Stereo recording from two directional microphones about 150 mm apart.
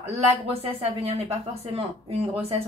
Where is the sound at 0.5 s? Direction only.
40° right (ahead or behind).